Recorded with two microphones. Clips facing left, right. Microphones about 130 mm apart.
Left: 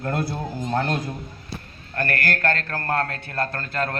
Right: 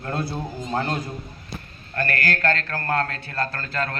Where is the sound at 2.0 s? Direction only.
50° left (ahead or behind).